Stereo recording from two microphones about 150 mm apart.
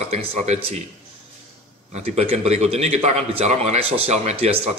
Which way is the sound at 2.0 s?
45° right (ahead or behind).